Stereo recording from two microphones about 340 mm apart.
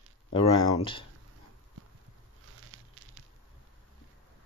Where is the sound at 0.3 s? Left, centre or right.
Centre.